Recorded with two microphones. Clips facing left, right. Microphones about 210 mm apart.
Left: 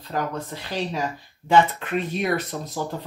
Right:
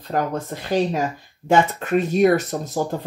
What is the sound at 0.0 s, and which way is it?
Speech, 50° right (ahead or behind).